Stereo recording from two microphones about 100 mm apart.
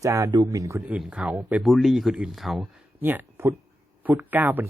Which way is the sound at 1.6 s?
Centre (ahead or behind).